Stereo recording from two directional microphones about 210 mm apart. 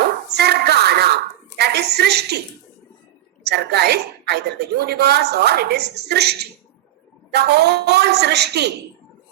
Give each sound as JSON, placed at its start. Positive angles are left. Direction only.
{"t": 0.0, "sound": "a sound", "side_deg": -50}
{"t": 1.5, "sound": "a woman's voice", "side_deg": -50}
{"t": 3.4, "sound": "a woman's voice", "side_deg": -50}